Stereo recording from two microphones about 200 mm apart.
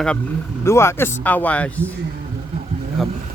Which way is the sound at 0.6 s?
15° left (ahead or behind).